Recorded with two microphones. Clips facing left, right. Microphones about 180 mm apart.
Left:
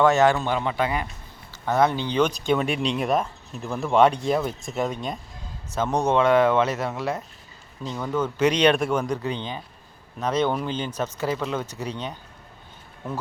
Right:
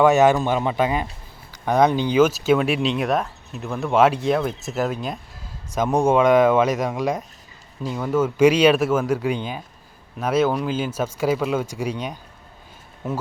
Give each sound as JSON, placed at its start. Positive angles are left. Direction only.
{"t": 0.0, "sound": "speech", "side_deg": -15}